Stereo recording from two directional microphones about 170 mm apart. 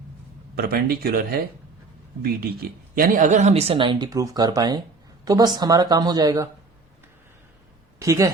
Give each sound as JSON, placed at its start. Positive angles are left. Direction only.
{"t": 0.5, "sound": "speech", "side_deg": -60}
{"t": 8.0, "sound": "speech", "side_deg": -20}